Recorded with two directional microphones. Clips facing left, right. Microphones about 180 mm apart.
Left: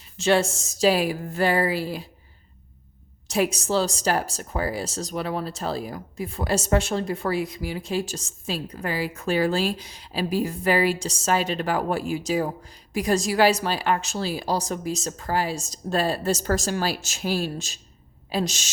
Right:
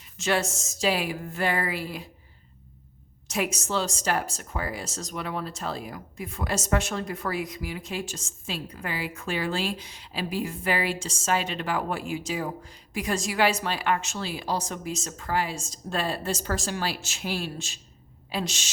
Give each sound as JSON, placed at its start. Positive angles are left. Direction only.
{"t": 0.2, "sound": "speech", "side_deg": 30}
{"t": 3.2, "sound": "a woman's voice", "side_deg": 35}